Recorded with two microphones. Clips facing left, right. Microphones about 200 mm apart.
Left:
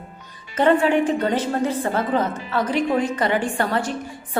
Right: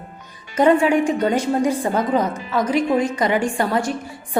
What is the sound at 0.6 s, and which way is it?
A woman's voice, 10° right (ahead or behind).